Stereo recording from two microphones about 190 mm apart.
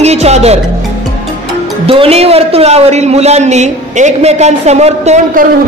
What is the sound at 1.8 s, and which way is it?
Speech, 30° right (ahead or behind).